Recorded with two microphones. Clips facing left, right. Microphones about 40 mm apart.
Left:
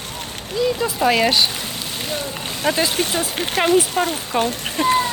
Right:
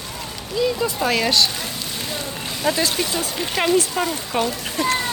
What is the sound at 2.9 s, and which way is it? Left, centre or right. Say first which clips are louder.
Speech: left 2 dB; left.